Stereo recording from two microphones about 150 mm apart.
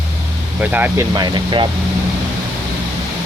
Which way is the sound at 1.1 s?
30° right (ahead or behind).